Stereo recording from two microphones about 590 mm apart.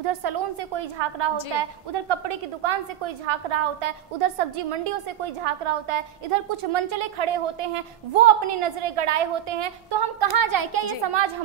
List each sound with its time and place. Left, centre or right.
0.2 s a woman's voice: right